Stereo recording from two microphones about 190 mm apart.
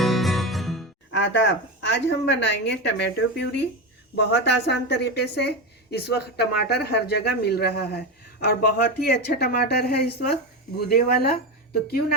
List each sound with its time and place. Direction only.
0.0 s music: centre (ahead or behind)
1.1 s speech: 65° left (ahead or behind)